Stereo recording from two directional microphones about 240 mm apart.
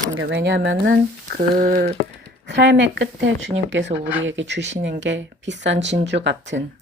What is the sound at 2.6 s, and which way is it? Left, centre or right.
Speech, right.